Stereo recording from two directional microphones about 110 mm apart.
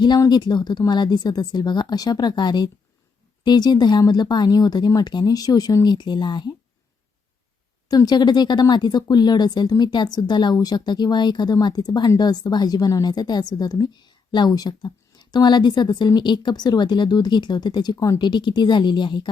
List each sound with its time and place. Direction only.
0.3 s speech: 40° left (ahead or behind)
7.9 s speech: 35° left (ahead or behind)